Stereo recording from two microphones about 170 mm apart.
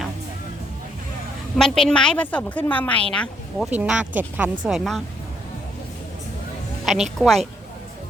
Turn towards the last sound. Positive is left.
turn(degrees=0)  # may be behind; listen again after turning